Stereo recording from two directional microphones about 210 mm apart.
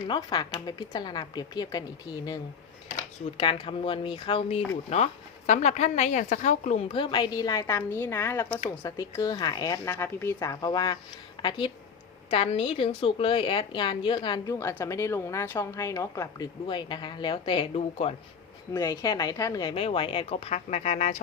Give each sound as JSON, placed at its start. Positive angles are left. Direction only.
{"t": 0.1, "sound": "a woman's voice", "side_deg": 20}
{"t": 18.7, "sound": "a woman's voice", "side_deg": 15}